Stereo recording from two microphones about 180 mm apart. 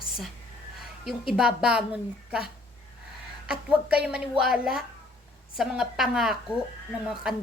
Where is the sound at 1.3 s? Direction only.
5° right (ahead or behind).